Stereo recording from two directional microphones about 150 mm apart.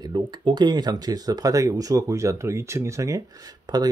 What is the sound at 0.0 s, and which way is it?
Speech, 30° right (ahead or behind).